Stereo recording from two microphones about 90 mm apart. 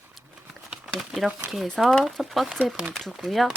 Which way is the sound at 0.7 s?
5° right (ahead or behind).